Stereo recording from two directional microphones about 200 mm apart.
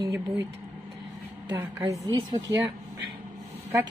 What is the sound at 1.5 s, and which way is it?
Speech, 10° right (ahead or behind).